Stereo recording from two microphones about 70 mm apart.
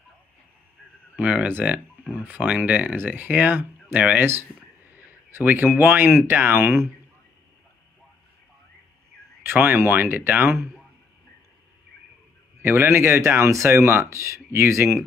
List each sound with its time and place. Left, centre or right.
1.1 s speech: right
9.4 s speech: right
12.6 s speech: right